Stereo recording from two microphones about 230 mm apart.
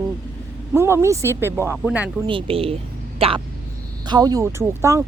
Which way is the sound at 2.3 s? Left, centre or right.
Right.